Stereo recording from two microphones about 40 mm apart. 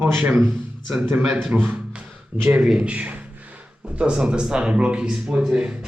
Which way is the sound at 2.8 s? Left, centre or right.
Right.